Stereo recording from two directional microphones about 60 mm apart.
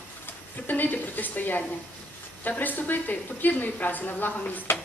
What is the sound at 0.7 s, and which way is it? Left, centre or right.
A woman's voice, left.